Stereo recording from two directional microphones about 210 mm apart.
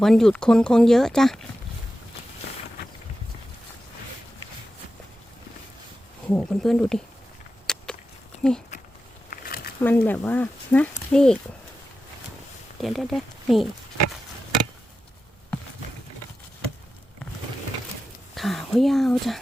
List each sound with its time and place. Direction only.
0.0 s speech: centre (ahead or behind)
6.2 s speech: 5° left (ahead or behind)
7.7 s biting: 5° left (ahead or behind)
8.4 s speech: 5° left (ahead or behind)
9.3 s a sound: 45° left (ahead or behind)
9.8 s speech: 10° left (ahead or behind)
12.8 s speech: centre (ahead or behind)
18.3 s speech: centre (ahead or behind)